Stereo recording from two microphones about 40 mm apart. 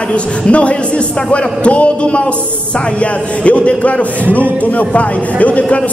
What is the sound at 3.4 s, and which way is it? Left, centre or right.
A man's voice, left.